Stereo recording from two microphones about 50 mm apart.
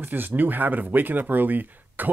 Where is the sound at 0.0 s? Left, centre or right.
Right.